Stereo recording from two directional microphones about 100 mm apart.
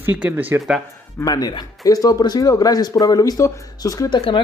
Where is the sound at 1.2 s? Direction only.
40° left (ahead or behind).